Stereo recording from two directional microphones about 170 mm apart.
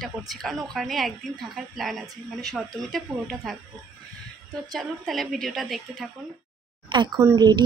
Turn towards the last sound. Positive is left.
turn(degrees=-20)  # may be behind; listen again after turning